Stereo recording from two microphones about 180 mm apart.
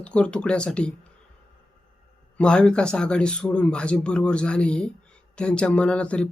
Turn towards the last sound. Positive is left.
turn(degrees=5)  # may be behind; listen again after turning